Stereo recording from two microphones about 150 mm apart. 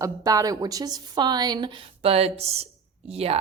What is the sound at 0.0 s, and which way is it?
A woman's voice, 25° right (ahead or behind).